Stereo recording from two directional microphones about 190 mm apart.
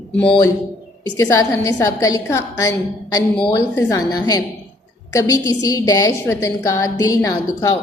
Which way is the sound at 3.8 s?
20° left (ahead or behind).